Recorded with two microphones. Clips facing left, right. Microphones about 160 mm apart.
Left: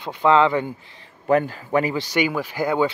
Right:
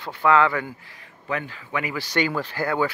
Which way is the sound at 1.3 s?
40° left (ahead or behind).